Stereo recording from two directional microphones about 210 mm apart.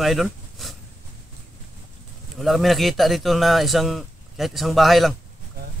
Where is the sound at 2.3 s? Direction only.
Centre (ahead or behind).